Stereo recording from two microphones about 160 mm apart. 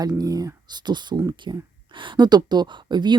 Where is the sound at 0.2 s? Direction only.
25° right (ahead or behind).